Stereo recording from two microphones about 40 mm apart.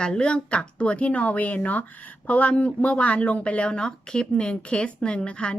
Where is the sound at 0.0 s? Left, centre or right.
Left.